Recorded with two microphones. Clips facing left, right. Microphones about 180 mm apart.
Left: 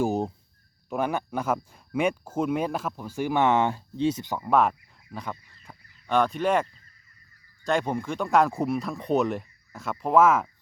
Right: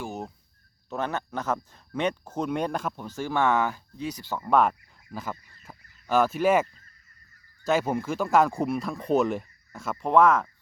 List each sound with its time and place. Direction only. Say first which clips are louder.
0.0 s a sound: left 10 dB; 35° left (ahead or behind)
0.9 s speech: left 3 dB; 10° left (ahead or behind)
3.2 s speech: left 2 dB; 15° left (ahead or behind)
4.4 s speech: even; centre (ahead or behind)